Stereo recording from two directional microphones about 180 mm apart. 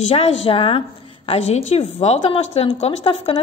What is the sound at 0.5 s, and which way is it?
A woman's voice, 30° left (ahead or behind).